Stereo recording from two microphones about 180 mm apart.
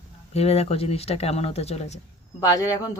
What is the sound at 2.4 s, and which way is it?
Speech, 20° left (ahead or behind).